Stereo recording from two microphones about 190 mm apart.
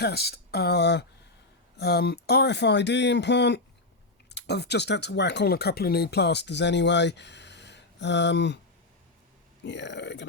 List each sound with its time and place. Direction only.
0.0 s speech: 55° left (ahead or behind)
9.6 s speech: 65° left (ahead or behind)